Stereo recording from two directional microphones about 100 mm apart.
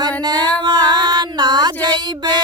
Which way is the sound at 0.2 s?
45° right (ahead or behind).